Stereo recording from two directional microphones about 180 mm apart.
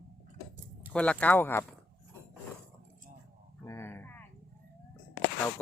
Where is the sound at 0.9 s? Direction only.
5° left (ahead or behind).